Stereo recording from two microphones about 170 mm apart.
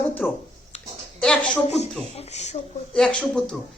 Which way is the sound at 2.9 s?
5° left (ahead or behind).